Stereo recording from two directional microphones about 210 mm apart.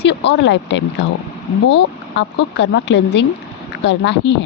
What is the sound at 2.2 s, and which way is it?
A woman's voice, 55° left (ahead or behind).